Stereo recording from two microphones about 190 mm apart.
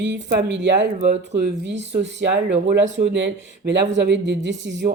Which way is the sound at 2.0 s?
65° right (ahead or behind).